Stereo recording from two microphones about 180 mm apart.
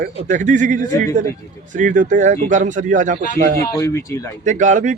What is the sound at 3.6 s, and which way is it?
Speech, 15° left (ahead or behind).